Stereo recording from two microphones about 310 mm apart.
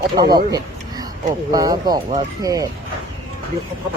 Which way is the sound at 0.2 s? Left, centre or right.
Centre.